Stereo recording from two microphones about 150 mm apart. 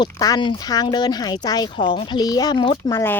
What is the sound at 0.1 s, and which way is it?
Speech, 25° left (ahead or behind).